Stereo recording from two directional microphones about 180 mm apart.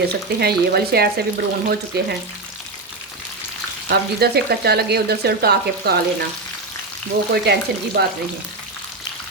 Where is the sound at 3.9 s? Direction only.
60° right (ahead or behind).